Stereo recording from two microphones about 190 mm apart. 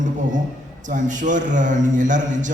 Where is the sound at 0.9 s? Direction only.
40° right (ahead or behind).